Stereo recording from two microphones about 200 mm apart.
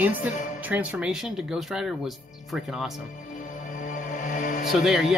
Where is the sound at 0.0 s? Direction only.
10° right (ahead or behind).